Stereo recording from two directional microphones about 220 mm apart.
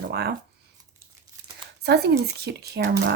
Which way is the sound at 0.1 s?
45° right (ahead or behind).